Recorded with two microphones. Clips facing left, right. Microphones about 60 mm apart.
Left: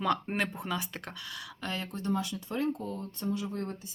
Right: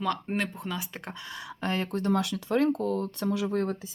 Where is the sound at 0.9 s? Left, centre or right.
Centre.